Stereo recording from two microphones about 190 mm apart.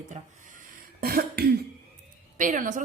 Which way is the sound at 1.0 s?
55° right (ahead or behind).